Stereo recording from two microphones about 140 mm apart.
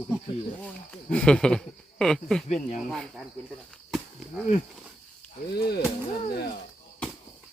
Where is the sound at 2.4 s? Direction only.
55° left (ahead or behind).